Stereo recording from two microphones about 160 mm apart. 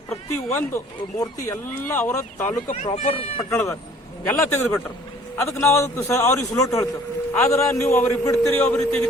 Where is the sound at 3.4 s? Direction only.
15° left (ahead or behind).